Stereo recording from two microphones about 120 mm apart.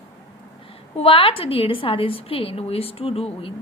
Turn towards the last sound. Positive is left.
turn(degrees=50)  # may be behind; listen again after turning